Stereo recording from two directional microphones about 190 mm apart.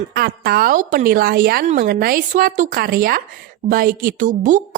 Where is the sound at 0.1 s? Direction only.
50° right (ahead or behind).